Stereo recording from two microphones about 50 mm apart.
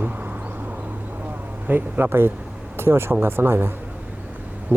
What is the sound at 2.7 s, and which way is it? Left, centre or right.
Speech, right.